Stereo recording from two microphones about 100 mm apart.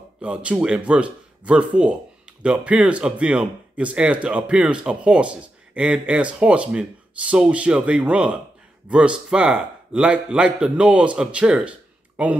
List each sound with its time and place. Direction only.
0.2 s speech: 10° right (ahead or behind)